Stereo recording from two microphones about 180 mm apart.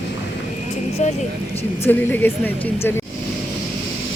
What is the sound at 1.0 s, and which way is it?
Speech, 40° left (ahead or behind).